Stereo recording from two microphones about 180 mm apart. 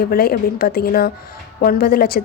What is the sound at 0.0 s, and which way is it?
A woman's voice, 55° left (ahead or behind).